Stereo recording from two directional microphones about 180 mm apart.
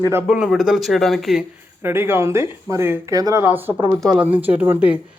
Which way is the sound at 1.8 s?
15° right (ahead or behind).